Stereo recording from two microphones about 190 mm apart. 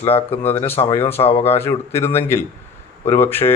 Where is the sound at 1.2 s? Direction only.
30° left (ahead or behind).